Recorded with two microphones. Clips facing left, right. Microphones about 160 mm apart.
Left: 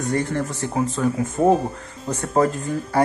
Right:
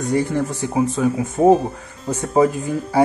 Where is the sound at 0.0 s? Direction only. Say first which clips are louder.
Right 3 dB; 10° right (ahead or behind).